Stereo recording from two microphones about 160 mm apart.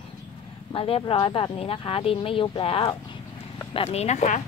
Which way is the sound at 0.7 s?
35° left (ahead or behind).